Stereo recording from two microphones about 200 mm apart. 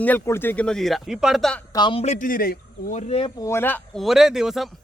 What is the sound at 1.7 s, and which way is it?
Speech, 25° left (ahead or behind).